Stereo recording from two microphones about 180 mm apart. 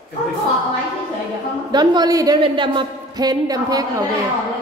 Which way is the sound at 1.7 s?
25° right (ahead or behind).